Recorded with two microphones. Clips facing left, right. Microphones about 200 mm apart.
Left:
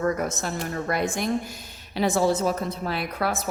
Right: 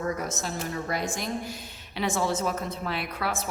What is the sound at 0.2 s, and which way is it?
A woman's voice, 55° left (ahead or behind).